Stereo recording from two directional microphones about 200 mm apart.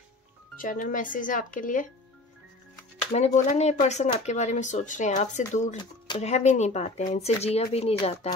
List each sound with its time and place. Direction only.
0.6 s speech: 45° left (ahead or behind)
3.1 s speech: 35° left (ahead or behind)